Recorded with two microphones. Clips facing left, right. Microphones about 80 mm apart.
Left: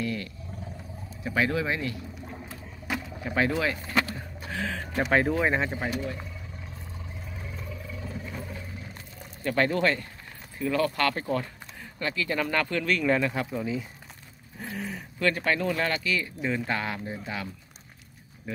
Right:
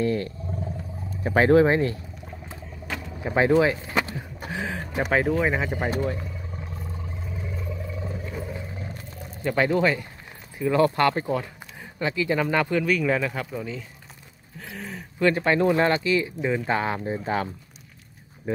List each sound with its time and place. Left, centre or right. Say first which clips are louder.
0.0 s roar: right 7 dB; right
1.1 s speech: right 9 dB; right
3.2 s speech: right 8 dB; right
5.1 s speech: right 1 dB; centre
8.3 s a sound: right 5 dB; centre
9.4 s speech: right 3 dB; centre
10.6 s speech: right 5 dB; right; by 13.8 s centre
14.8 s a sound: even; centre
15.1 s speech: right 5 dB; right
16.3 s speech: right 4 dB; centre
16.7 s speech: right 6 dB; right